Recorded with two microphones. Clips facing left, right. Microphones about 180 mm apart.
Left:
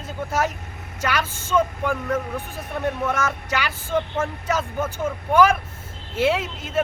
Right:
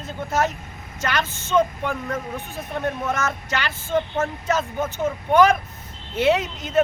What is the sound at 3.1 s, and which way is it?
Speech, 10° left (ahead or behind).